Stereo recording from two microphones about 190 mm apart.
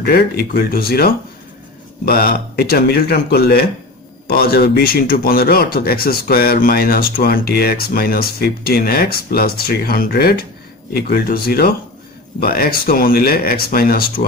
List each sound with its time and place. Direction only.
0.0 s speech: 55° left (ahead or behind)